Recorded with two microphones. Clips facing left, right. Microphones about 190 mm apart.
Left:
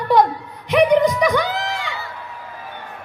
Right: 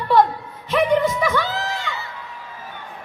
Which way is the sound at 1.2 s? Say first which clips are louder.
Left 3 dB; 15° left (ahead or behind).